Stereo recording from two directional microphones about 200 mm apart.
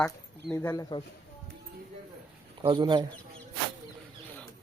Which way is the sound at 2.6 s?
25° right (ahead or behind).